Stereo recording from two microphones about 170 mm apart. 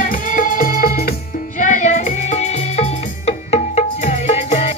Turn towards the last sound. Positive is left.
turn(degrees=40)  # may be behind; listen again after turning